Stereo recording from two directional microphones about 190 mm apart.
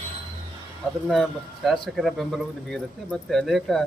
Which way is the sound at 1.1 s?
Centre (ahead or behind).